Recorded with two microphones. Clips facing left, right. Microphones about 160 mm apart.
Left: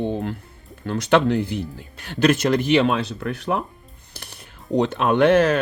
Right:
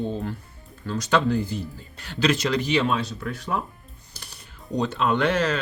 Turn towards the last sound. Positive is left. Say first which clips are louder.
# left 7 dB
turn(degrees=55)  # may be behind; listen again after turning